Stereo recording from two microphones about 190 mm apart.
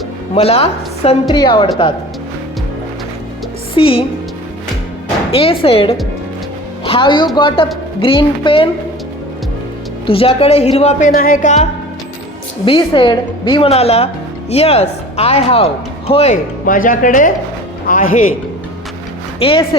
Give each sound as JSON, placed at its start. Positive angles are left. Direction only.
{"t": 0.3, "sound": "a woman's voice", "side_deg": 30}
{"t": 3.8, "sound": "a woman's voice", "side_deg": 30}
{"t": 5.3, "sound": "a woman's voice", "side_deg": 30}
{"t": 10.1, "sound": "speech", "side_deg": 30}
{"t": 11.1, "sound": "music", "side_deg": 50}
{"t": 12.6, "sound": "a woman's voice", "side_deg": 25}
{"t": 17.8, "sound": "music", "side_deg": 45}
{"t": 19.4, "sound": "a woman's voice", "side_deg": 30}